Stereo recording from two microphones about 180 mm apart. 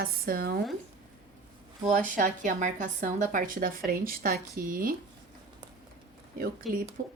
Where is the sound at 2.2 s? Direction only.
45° right (ahead or behind).